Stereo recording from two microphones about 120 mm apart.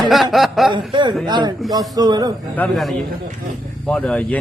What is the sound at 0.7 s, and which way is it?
Speech, 45° right (ahead or behind).